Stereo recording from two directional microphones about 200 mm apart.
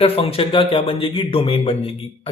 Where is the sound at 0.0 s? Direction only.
30° left (ahead or behind).